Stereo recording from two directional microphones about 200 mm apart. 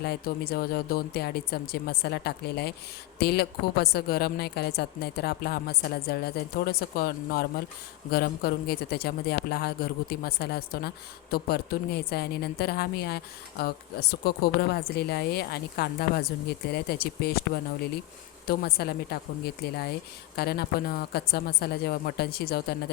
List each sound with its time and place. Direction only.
0.0 s speech: 50° left (ahead or behind)
18.4 s speech: 50° left (ahead or behind)
20.3 s speech: 50° left (ahead or behind)